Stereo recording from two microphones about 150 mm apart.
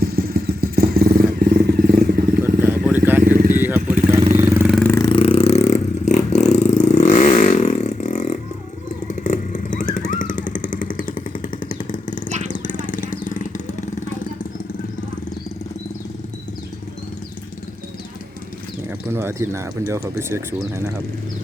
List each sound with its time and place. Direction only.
0.0 s vehicle: 90° right
2.6 s vehicle: 10° right (ahead or behind)
4.7 s vehicle: 10° left (ahead or behind)
4.9 s vehicle: 25° left (ahead or behind)
5.2 s vehicle: 40° left (ahead or behind); by 8.4 s 55° left (ahead or behind)
9.2 s motorcycle: 60° left (ahead or behind)
12.6 s vehicle: 60° left (ahead or behind)
19.1 s speech: 15° right (ahead or behind)